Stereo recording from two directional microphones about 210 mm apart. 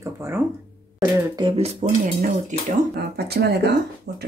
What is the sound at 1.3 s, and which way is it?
Speech, 25° right (ahead or behind).